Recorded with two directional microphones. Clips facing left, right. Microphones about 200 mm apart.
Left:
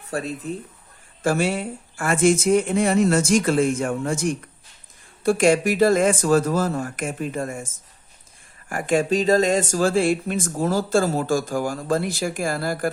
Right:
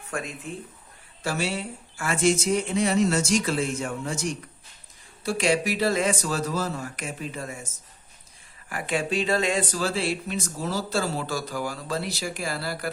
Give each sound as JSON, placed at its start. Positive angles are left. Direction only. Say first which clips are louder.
{"t": 0.1, "sound": "speech", "louder": "left 6 dB", "side_deg": 35}
{"t": 1.2, "sound": "speech", "louder": "left 7 dB", "side_deg": 50}
{"t": 8.7, "sound": "speech", "louder": "left 7 dB", "side_deg": 45}